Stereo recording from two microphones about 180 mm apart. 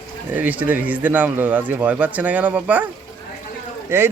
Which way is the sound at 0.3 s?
10° right (ahead or behind).